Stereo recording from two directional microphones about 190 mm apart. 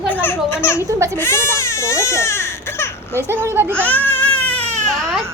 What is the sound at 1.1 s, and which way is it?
Speech, 10° left (ahead or behind).